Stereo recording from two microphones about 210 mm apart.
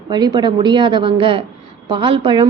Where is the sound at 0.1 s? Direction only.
20° right (ahead or behind).